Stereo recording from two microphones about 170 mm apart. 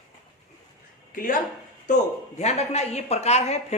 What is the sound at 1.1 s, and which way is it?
Speech, 55° left (ahead or behind).